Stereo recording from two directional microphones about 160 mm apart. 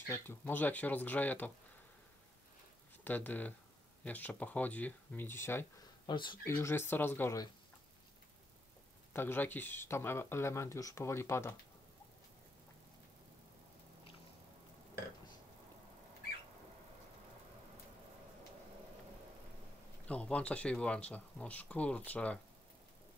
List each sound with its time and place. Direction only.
0.1 s speech: 15° left (ahead or behind)
3.0 s speech: 10° left (ahead or behind)
6.0 s speech: 30° left (ahead or behind)
6.4 s speech: 15° left (ahead or behind)
9.1 s speech: 15° left (ahead or behind)
20.1 s speech: 10° left (ahead or behind)